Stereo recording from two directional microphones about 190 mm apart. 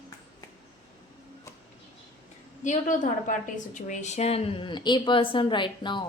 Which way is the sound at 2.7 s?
40° left (ahead or behind).